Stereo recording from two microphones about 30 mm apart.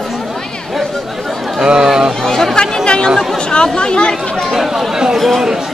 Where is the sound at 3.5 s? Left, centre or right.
Left.